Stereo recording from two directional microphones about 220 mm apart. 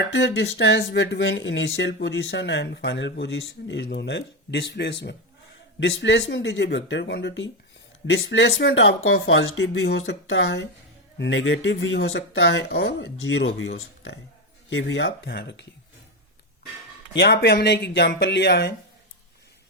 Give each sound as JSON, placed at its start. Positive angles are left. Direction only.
{"t": 0.1, "sound": "speech", "side_deg": 55}
{"t": 17.2, "sound": "speech", "side_deg": 50}